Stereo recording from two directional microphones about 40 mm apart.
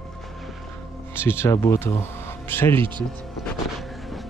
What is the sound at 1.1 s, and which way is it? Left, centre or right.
Speech, left.